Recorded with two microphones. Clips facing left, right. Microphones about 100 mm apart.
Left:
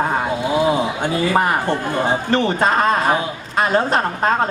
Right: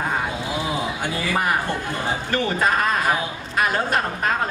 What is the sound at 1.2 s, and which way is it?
A man's voice, 30° left (ahead or behind).